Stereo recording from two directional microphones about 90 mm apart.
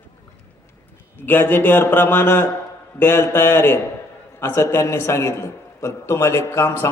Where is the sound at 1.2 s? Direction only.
20° left (ahead or behind).